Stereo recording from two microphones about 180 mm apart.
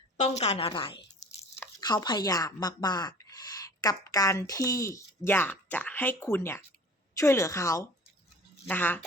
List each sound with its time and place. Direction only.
0.2 s a woman's voice: 35° left (ahead or behind)
1.5 s a woman's voice: 15° left (ahead or behind)